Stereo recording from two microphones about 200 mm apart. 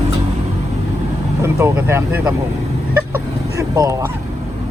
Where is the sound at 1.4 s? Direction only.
15° right (ahead or behind).